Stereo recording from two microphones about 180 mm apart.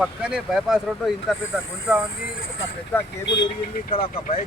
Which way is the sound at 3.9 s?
30° left (ahead or behind).